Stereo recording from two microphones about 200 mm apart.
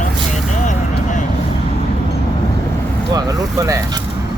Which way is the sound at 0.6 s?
40° left (ahead or behind).